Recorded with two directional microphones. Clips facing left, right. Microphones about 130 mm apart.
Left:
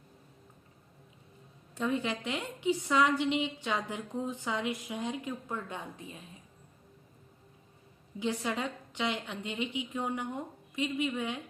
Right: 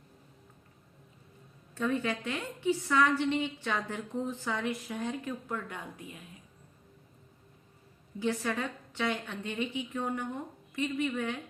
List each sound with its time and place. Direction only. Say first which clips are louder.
1.8 s a woman's voice: right 1 dB; 15° left (ahead or behind)
8.2 s a woman's voice: right 1 dB; 15° left (ahead or behind)